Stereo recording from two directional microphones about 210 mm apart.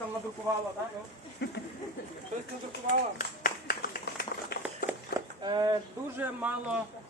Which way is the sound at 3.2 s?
40° left (ahead or behind).